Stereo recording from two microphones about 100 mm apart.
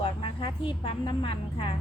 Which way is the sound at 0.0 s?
55° left (ahead or behind).